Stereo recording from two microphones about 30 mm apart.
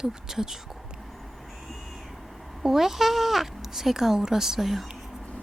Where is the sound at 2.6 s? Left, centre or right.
Centre.